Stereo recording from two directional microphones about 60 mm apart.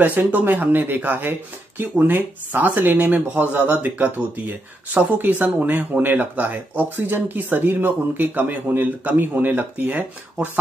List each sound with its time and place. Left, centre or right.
0.0 s speech: right